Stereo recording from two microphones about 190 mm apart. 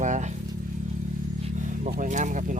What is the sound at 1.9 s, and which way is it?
Speech, 40° right (ahead or behind).